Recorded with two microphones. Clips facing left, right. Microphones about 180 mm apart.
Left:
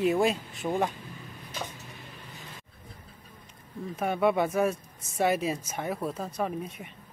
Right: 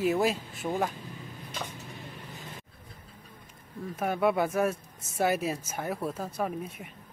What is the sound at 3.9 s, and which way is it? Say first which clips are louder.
Speech: left 1 dB; centre (ahead or behind).